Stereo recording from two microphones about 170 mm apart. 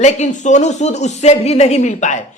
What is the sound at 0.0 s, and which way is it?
A woman's voice, 45° left (ahead or behind).